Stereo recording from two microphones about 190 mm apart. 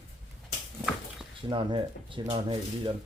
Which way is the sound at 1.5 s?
25° right (ahead or behind).